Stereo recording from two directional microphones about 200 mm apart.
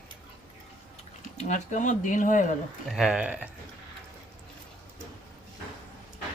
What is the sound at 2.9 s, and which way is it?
Speech, 5° right (ahead or behind).